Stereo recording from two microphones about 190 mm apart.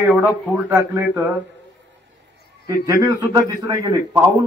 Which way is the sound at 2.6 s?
15° right (ahead or behind).